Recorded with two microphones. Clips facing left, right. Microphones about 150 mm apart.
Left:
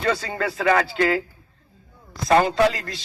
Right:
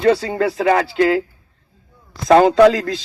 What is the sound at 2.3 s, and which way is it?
Speech, 90° right.